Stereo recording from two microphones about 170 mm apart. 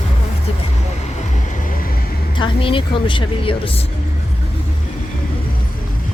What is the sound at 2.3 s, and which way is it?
A woman's voice, 30° left (ahead or behind).